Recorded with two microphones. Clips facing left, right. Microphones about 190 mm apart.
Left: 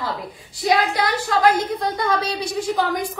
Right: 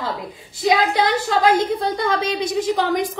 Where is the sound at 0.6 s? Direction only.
25° right (ahead or behind).